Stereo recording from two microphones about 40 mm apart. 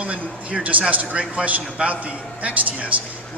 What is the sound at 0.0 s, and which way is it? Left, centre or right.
A man's voice, right.